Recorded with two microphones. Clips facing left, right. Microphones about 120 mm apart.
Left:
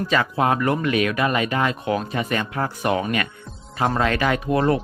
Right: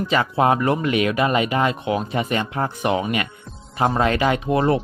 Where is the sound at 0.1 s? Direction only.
25° right (ahead or behind).